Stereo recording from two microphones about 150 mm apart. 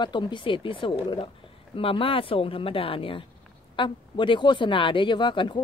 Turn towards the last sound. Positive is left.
turn(degrees=35)  # may be behind; listen again after turning